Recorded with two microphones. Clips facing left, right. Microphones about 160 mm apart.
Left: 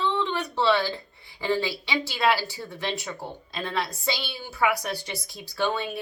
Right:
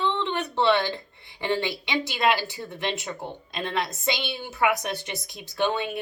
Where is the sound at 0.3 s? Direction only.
20° right (ahead or behind).